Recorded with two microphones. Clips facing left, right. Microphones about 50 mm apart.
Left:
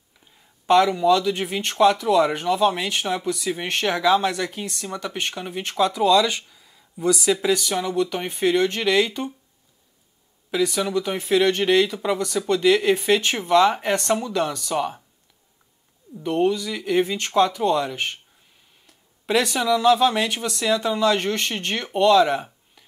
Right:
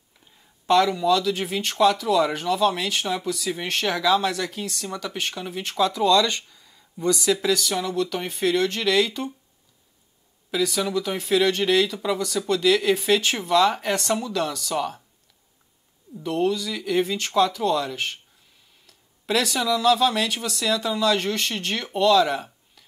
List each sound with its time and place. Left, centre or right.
0.7 s speech: left
5.9 s speech: centre
10.5 s speech: centre
16.2 s speech: centre